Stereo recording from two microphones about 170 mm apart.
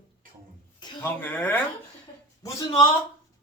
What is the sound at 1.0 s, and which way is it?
Speech, 10° left (ahead or behind).